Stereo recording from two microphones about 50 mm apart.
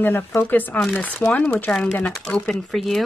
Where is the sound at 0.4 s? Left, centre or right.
Left.